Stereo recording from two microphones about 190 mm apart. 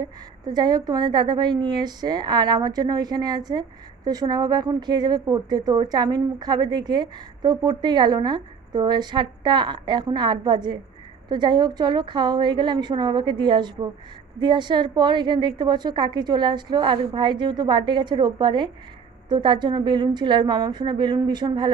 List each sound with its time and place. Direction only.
0.0 s a woman's voice: 20° right (ahead or behind)